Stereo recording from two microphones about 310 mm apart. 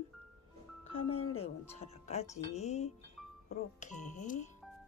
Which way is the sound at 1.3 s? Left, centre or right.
Centre.